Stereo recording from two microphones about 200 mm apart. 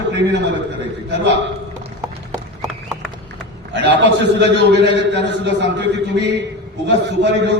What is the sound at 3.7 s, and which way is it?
A man's voice, 60° right (ahead or behind).